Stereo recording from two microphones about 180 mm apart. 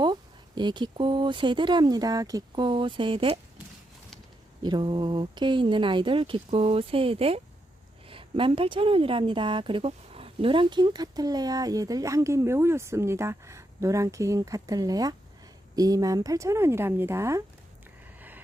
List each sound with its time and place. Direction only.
0.0 s a woman's voice: 25° right (ahead or behind)
4.6 s a woman's voice: 25° right (ahead or behind)
18.2 s a sound: 10° right (ahead or behind)